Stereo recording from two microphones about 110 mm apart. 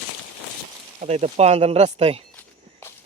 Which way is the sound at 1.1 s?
80° right.